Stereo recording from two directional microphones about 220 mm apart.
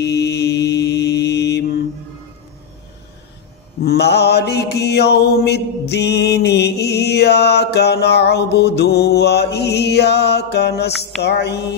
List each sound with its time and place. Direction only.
0.0 s mantra: 50° left (ahead or behind)
3.8 s mantra: 50° left (ahead or behind)